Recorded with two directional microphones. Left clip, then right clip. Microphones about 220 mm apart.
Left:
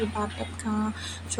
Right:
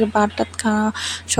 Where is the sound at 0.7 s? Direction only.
40° right (ahead or behind).